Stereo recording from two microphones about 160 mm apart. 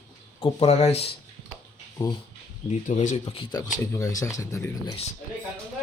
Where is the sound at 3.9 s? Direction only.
20° left (ahead or behind).